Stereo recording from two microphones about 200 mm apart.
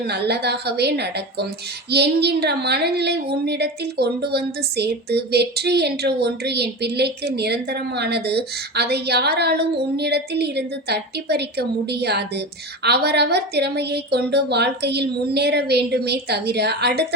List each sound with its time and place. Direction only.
0.1 s a woman's voice: 55° right (ahead or behind)